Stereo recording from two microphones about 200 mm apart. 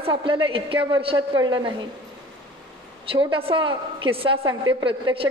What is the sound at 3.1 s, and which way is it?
A woman's voice, 25° right (ahead or behind).